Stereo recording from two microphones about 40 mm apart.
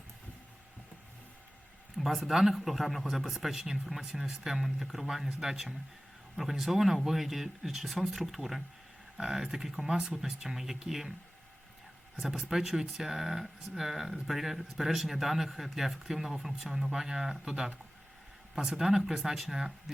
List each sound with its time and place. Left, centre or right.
2.0 s speech: centre
12.1 s speech: centre
18.5 s speech: centre